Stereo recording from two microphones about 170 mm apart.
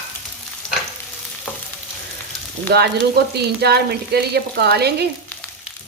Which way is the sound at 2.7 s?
70° right (ahead or behind).